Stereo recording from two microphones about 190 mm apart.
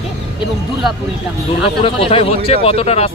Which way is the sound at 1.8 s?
30° left (ahead or behind).